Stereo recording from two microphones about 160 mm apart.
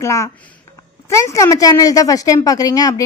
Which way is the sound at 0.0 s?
20° left (ahead or behind).